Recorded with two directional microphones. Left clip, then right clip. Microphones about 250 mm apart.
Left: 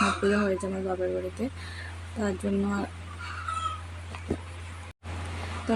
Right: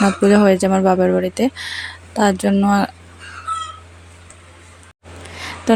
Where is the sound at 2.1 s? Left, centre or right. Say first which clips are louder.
Right 14 dB; right.